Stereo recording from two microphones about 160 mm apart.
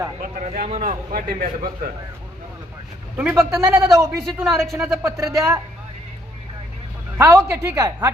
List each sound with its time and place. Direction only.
0.2 s a man's voice: 55° right (ahead or behind)
3.2 s a man's voice: 15° right (ahead or behind)
4.4 s speech: centre (ahead or behind)
5.0 s a man's voice: 15° right (ahead or behind)
7.2 s a man's voice: 20° right (ahead or behind)